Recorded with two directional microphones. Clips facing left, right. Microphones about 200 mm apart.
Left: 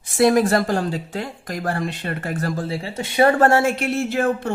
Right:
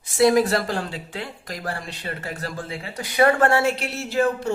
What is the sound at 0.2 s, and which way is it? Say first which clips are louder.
Speech: left 2 dB; 50° left (ahead or behind).